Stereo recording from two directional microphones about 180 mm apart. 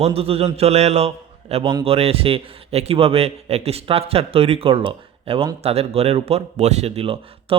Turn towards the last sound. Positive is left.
turn(degrees=-30)  # may be behind; listen again after turning